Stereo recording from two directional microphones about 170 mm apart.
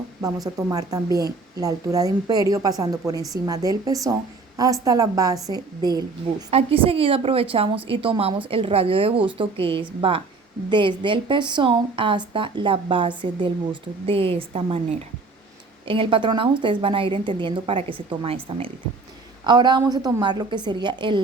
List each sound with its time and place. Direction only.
0.4 s speech: 20° right (ahead or behind)
6.5 s a woman's voice: 35° right (ahead or behind)
15.9 s a woman's voice: 30° right (ahead or behind)